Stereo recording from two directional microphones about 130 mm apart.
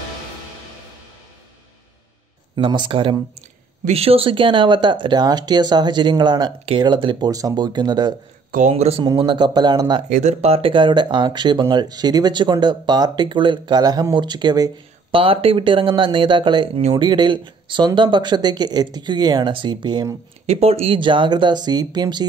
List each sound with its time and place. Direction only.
2.5 s speech: 35° right (ahead or behind)
8.5 s speech: 70° right (ahead or behind); by 9.0 s 55° right (ahead or behind)
9.0 s speech: 35° right (ahead or behind)
10.0 s speech: 65° right (ahead or behind); by 20.2 s 35° right (ahead or behind)
20.4 s speech: 50° right (ahead or behind)
21.0 s speech: 40° right (ahead or behind)